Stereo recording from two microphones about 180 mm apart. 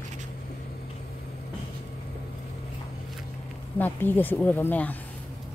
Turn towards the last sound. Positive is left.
turn(degrees=10)  # may be behind; listen again after turning